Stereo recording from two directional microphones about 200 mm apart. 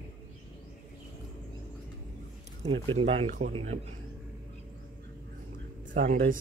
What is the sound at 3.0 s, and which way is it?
Speech, 35° right (ahead or behind).